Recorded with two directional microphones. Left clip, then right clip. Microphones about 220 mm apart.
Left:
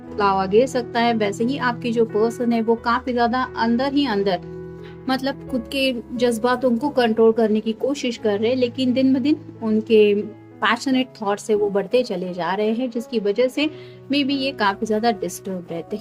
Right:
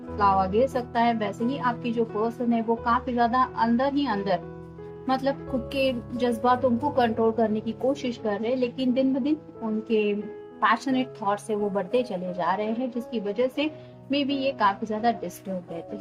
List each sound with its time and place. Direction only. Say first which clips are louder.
0.2 s speech: left 4 dB; 35° left (ahead or behind)